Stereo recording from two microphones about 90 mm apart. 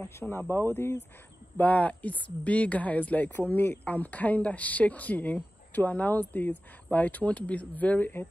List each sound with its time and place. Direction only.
0.0 s speech: 25° left (ahead or behind)